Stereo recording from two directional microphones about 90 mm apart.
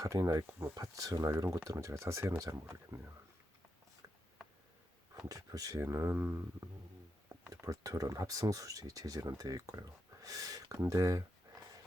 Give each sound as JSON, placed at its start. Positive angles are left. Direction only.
{"t": 0.0, "sound": "speech", "side_deg": -45}
{"t": 5.1, "sound": "speech", "side_deg": -40}
{"t": 5.8, "sound": "speech", "side_deg": -30}
{"t": 7.5, "sound": "speech", "side_deg": -40}